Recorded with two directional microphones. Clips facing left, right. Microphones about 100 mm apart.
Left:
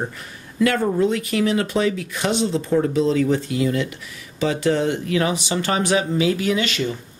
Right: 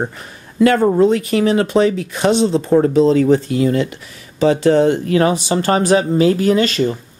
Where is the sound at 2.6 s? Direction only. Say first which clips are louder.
Right 7 dB; 45° right (ahead or behind).